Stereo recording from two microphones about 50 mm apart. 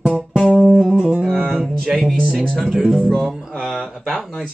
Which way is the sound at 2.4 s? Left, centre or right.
Centre.